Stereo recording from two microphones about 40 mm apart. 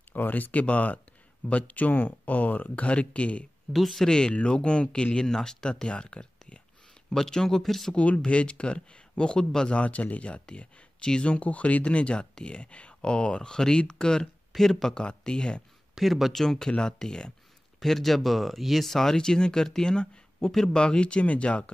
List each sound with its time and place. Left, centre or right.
0.1 s speech: left
2.9 s speech: left
3.7 s speech: centre
4.3 s speech: left
7.1 s speech: centre
7.9 s speech: left
9.8 s speech: left
11.0 s speech: left
11.4 s speech: left
16.0 s speech: centre
16.4 s speech: centre
17.7 s speech: centre
19.1 s speech: centre